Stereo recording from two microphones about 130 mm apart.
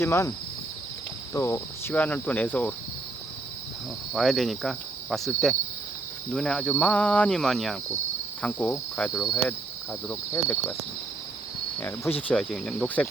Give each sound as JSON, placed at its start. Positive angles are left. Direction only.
{"t": 0.0, "sound": "speech", "side_deg": 20}
{"t": 4.1, "sound": "cricket", "side_deg": 0}
{"t": 6.3, "sound": "speech", "side_deg": 5}
{"t": 9.1, "sound": "cricket", "side_deg": 0}
{"t": 10.3, "sound": "speech", "side_deg": 20}
{"t": 11.8, "sound": "speech", "side_deg": 15}
{"t": 12.3, "sound": "cricket", "side_deg": 5}